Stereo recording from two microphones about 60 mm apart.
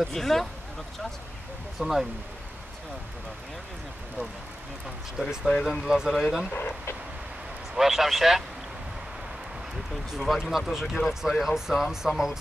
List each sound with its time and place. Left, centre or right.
0.0 s speech: centre
1.8 s speech: centre
4.8 s speech: centre
6.5 s speech: left
7.7 s speech: centre
10.1 s speech: centre